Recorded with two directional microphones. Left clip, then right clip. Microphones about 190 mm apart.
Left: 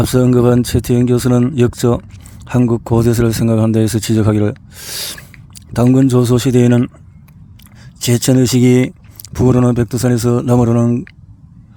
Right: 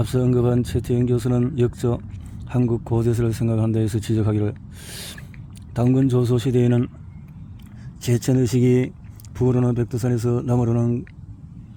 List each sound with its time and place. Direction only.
0.0 s speech: 45° left (ahead or behind)
8.0 s speech: 45° left (ahead or behind)